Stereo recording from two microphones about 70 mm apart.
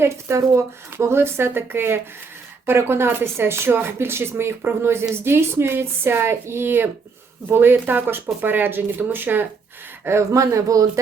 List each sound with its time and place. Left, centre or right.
0.0 s speech: right
10.1 s speech: right